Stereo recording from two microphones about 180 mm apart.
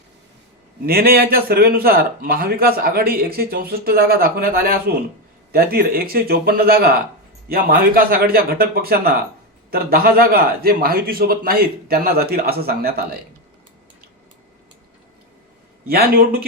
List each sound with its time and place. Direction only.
0.9 s a man's voice: 55° right (ahead or behind)
15.9 s a man's voice: 55° right (ahead or behind)